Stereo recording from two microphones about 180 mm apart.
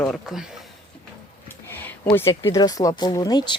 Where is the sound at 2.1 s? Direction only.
15° left (ahead or behind).